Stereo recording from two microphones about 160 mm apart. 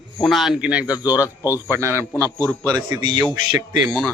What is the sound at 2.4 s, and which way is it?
Speech, 10° left (ahead or behind).